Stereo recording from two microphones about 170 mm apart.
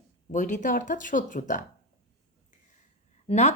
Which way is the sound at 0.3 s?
45° left (ahead or behind).